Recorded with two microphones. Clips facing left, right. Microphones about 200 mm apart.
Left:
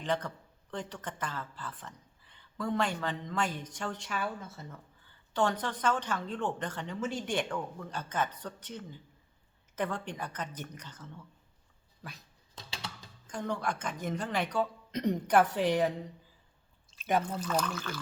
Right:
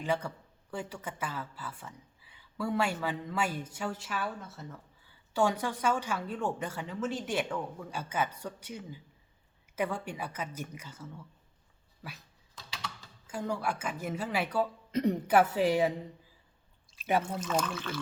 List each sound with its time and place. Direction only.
0.0 s speech: 10° right (ahead or behind)
12.5 s typing: 30° left (ahead or behind)
13.2 s speech: 5° right (ahead or behind)
16.9 s speech: 5° right (ahead or behind)